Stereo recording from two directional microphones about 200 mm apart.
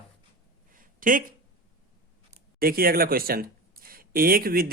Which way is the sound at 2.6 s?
50° right (ahead or behind).